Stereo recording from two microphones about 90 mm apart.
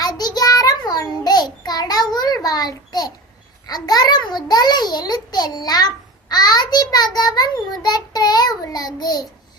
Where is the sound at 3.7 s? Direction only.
45° left (ahead or behind).